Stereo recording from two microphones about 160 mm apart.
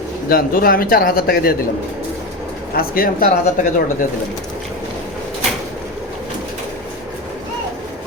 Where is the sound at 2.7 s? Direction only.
65° left (ahead or behind).